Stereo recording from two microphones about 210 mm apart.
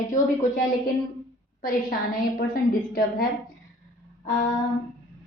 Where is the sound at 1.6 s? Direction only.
45° left (ahead or behind).